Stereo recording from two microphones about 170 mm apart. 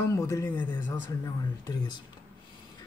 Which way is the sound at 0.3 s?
15° left (ahead or behind).